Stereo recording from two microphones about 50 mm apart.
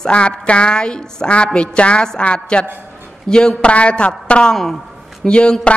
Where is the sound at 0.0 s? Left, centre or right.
Left.